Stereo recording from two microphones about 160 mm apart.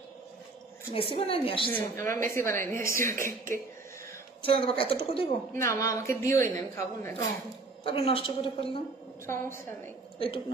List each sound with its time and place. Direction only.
0.9 s a woman's voice: 35° left (ahead or behind)
1.7 s a woman's voice: 15° left (ahead or behind)
3.3 s speech: 60° right (ahead or behind)
4.4 s a woman's voice: 35° left (ahead or behind)
5.5 s a woman's voice: 20° left (ahead or behind)
7.8 s a woman's voice: 35° left (ahead or behind)
9.2 s a woman's voice: 15° left (ahead or behind)
10.1 s a woman's voice: 30° left (ahead or behind)